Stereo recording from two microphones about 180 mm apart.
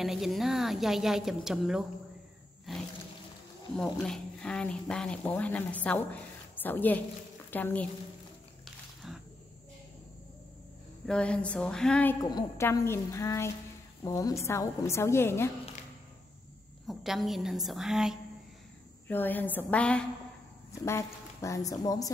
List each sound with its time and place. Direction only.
0.0 s speech: centre (ahead or behind)
2.7 s a sound: centre (ahead or behind)
3.7 s a woman's voice: 5° left (ahead or behind)
11.1 s a woman's voice: 5° left (ahead or behind)
16.8 s speech: centre (ahead or behind)
19.0 s a woman's voice: 10° left (ahead or behind)